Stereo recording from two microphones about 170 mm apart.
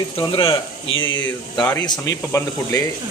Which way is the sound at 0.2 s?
30° left (ahead or behind).